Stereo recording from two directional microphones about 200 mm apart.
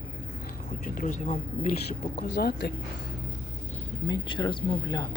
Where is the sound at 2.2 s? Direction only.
55° left (ahead or behind).